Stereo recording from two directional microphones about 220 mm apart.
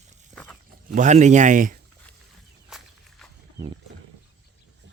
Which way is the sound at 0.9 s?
35° right (ahead or behind).